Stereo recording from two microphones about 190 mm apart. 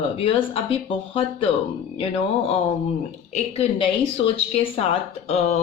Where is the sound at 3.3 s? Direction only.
30° left (ahead or behind).